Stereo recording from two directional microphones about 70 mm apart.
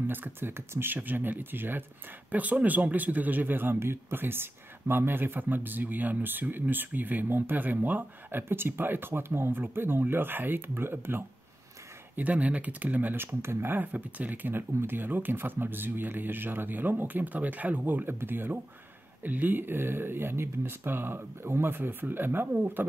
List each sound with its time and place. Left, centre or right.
0.0 s a man's voice: right
12.2 s a man's voice: right
13.9 s a man's voice: right